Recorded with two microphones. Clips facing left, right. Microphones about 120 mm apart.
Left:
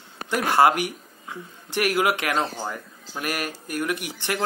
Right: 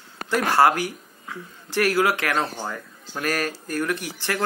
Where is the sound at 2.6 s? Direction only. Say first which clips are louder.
Even; 10° left (ahead or behind).